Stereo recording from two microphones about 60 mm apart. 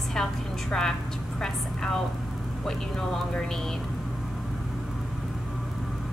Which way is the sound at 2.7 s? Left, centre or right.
Centre.